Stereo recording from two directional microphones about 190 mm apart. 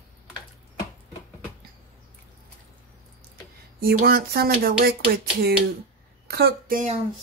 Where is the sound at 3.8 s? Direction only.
50° right (ahead or behind).